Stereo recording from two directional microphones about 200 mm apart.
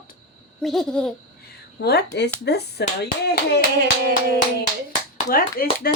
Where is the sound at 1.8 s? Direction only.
55° left (ahead or behind).